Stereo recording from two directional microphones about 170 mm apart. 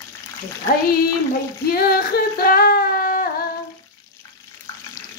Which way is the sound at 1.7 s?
60° left (ahead or behind).